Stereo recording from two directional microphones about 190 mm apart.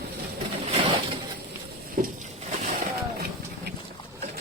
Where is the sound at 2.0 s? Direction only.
40° right (ahead or behind).